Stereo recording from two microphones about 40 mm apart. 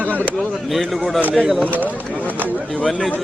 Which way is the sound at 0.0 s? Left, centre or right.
Right.